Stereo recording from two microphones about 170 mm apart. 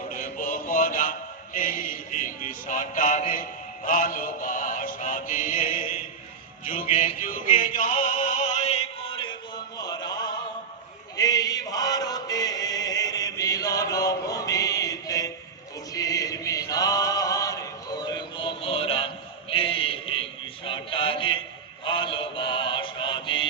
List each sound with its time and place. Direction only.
0.1 s music: 55° left (ahead or behind)
6.7 s opera: 50° left (ahead or behind); by 9.3 s 30° left (ahead or behind)
9.7 s a sound: 25° left (ahead or behind)
11.2 s chant: 20° left (ahead or behind)
20.7 s mantra: 30° left (ahead or behind)